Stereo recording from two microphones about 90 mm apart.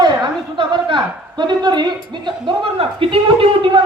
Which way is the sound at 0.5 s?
65° right (ahead or behind).